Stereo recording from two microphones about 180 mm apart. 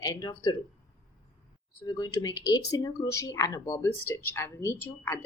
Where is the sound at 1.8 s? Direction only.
20° left (ahead or behind).